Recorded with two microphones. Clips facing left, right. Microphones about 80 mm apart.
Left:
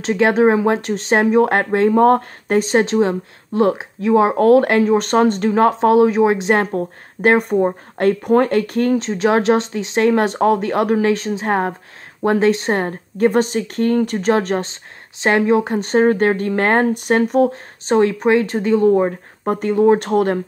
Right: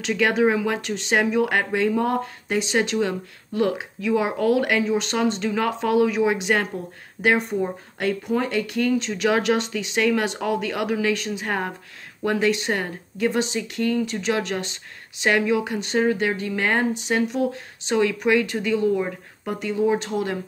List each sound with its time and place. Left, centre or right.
0.0 s speech: left
6.7 s speech: left